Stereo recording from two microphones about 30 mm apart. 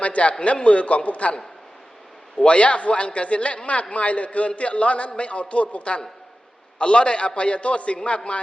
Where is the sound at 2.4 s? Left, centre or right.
Left.